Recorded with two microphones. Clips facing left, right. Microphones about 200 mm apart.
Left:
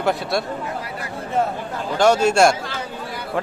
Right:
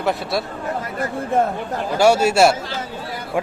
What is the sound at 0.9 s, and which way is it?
Speech, 45° right (ahead or behind).